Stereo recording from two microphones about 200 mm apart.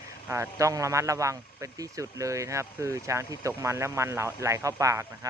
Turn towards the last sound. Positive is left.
turn(degrees=-15)  # may be behind; listen again after turning